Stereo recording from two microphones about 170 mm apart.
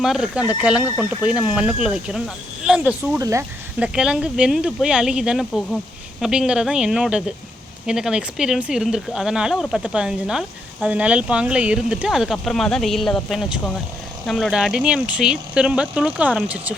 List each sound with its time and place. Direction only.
0.0 s speech: 5° right (ahead or behind)
3.2 s speech: 20° right (ahead or behind)
3.8 s speech: 5° right (ahead or behind)